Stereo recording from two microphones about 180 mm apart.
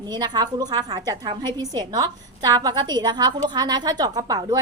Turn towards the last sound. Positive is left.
turn(degrees=-20)  # may be behind; listen again after turning